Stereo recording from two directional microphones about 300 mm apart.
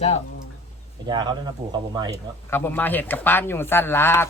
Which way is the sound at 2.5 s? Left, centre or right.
Centre.